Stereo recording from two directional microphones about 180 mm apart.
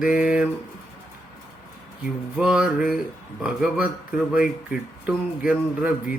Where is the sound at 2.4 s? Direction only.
5° right (ahead or behind).